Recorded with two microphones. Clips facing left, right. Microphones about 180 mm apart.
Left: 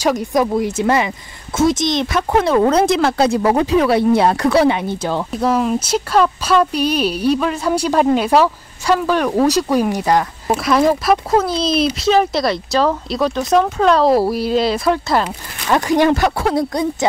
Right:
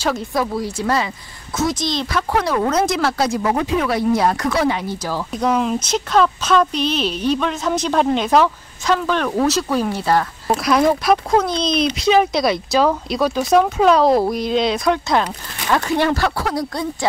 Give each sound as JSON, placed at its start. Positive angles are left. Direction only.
{"t": 0.0, "sound": "speech", "side_deg": 15}
{"t": 5.3, "sound": "speech", "side_deg": 5}
{"t": 10.6, "sound": "speech", "side_deg": 0}
{"t": 15.7, "sound": "speech", "side_deg": 15}